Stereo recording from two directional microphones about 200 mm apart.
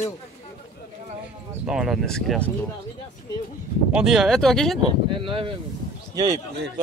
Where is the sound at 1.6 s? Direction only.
5° right (ahead or behind).